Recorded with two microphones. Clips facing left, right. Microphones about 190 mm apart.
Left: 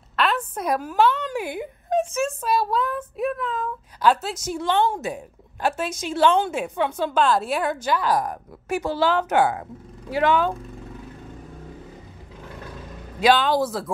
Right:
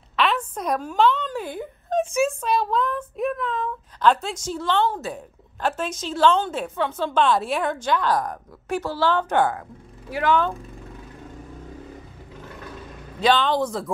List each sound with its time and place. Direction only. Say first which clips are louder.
0.1 s a sound: even; centre (ahead or behind)
2.4 s speech: even; 5° left (ahead or behind)
10.0 s speech: left 2 dB; 25° left (ahead or behind)
13.2 s speech: left 1 dB; 10° left (ahead or behind)